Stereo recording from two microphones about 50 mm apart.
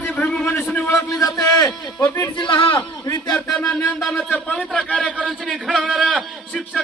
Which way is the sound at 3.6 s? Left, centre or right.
Left.